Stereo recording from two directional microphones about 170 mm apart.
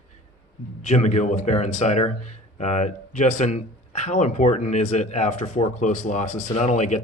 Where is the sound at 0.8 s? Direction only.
40° left (ahead or behind).